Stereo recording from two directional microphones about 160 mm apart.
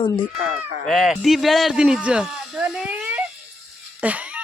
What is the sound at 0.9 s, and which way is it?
Speech, centre (ahead or behind).